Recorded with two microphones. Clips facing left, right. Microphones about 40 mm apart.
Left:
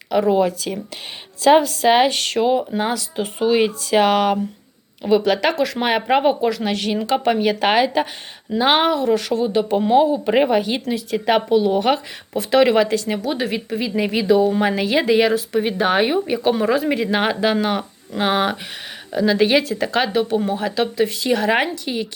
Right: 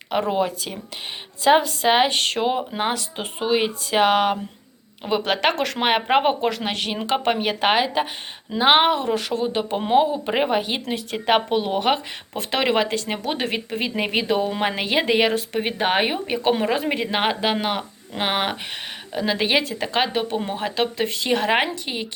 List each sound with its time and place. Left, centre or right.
0.1 s speech: right
0.3 s speech: centre
3.4 s speech: centre
5.2 s speech: right
5.5 s speech: right
5.8 s speech: right
10.8 s speech: right